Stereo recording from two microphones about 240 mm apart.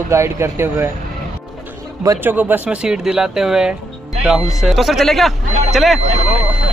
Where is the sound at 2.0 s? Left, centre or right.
Centre.